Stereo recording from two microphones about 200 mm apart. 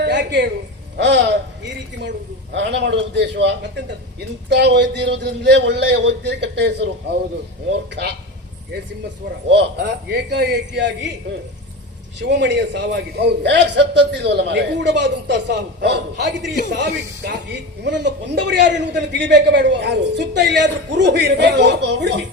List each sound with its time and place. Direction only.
0.0 s a sound: 60° right (ahead or behind)
0.9 s speech: 60° right (ahead or behind)
9.5 s speech: 60° right (ahead or behind)
12.2 s speech: 60° right (ahead or behind)